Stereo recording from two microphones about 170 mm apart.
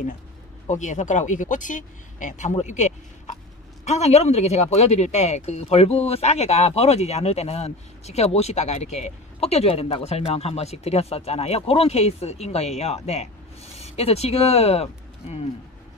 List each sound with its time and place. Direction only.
0.7 s speech: 45° left (ahead or behind)